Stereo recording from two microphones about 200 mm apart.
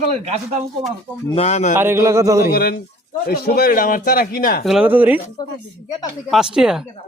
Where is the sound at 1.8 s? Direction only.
15° right (ahead or behind).